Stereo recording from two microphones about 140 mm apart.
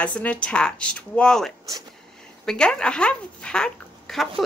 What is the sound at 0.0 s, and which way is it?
Speech, 10° left (ahead or behind).